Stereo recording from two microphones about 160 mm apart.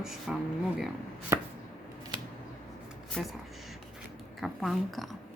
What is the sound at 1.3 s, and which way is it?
Chopping, 15° right (ahead or behind).